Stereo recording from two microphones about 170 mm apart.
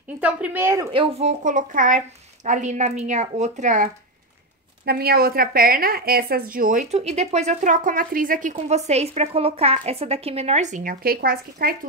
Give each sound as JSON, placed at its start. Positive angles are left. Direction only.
{"t": 0.2, "sound": "speech", "side_deg": -10}
{"t": 0.9, "sound": "a woman's voice", "side_deg": -35}
{"t": 4.8, "sound": "a woman's voice", "side_deg": -65}